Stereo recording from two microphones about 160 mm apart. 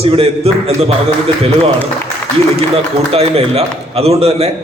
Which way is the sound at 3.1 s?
40° right (ahead or behind).